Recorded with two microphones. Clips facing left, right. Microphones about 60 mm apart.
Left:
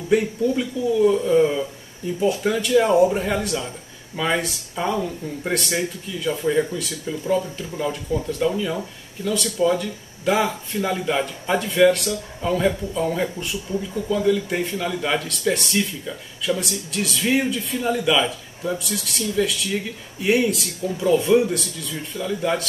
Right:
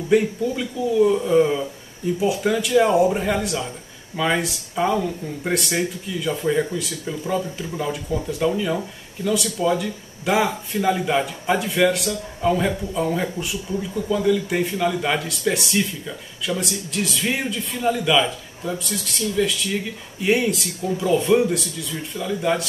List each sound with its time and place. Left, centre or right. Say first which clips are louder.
0.8 s speech: right 1 dB; centre